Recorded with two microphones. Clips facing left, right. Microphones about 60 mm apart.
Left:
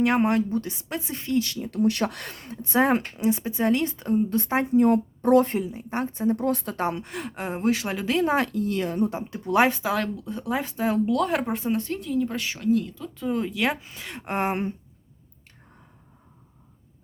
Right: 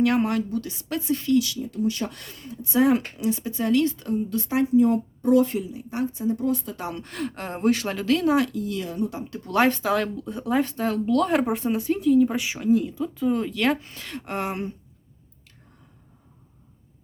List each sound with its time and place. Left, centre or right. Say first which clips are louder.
0.0 s a woman's voice: even; left
1.4 s speech: even; left
2.6 s a woman's voice: right 1 dB; left
3.2 s a woman's voice: left 2 dB; left
4.7 s a woman's voice: left 1 dB; left
6.9 s speech: right 1 dB; centre
8.0 s a woman's voice: right 2 dB; left
9.4 s speech: even; centre
13.2 s speech: right 2 dB; centre
14.3 s a woman's voice: left 3 dB; left